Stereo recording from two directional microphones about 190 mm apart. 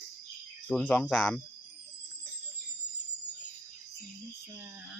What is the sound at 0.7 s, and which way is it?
Speech, 5° left (ahead or behind).